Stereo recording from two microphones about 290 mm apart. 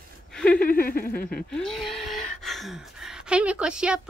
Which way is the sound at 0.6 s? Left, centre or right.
Left.